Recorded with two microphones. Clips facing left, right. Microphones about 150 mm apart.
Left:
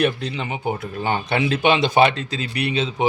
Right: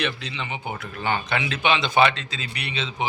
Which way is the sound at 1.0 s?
35° left (ahead or behind).